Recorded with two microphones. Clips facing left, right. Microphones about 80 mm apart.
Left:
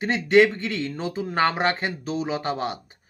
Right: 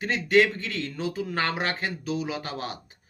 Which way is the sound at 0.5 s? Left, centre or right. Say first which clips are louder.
Left 4 dB; left.